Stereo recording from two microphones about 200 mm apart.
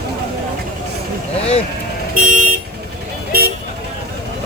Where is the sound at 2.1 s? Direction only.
40° right (ahead or behind).